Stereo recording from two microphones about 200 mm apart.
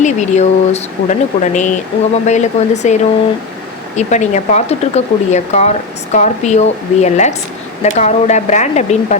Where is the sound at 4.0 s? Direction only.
35° left (ahead or behind).